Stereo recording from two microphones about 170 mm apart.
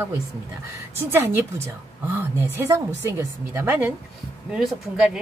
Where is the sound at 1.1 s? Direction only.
15° right (ahead or behind).